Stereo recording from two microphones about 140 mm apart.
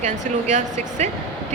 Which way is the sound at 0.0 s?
60° right (ahead or behind).